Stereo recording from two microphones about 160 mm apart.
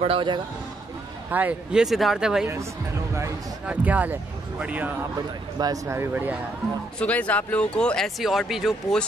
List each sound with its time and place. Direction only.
0.0 s speech: 35° right (ahead or behind)
1.3 s speech: 10° right (ahead or behind)
5.6 s speech: 20° right (ahead or behind)
7.0 s speech: 10° left (ahead or behind)